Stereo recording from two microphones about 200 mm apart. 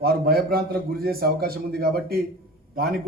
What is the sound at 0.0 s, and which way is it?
A man's voice, 50° right (ahead or behind).